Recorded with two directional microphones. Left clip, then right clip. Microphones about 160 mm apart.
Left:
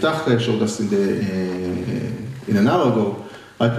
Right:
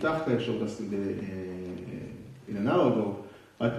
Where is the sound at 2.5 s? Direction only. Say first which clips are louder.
Left 8 dB; 30° left (ahead or behind).